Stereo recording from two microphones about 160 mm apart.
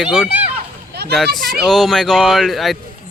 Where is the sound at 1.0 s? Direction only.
90° right.